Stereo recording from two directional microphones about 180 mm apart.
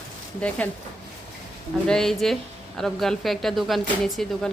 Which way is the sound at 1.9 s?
Centre (ahead or behind).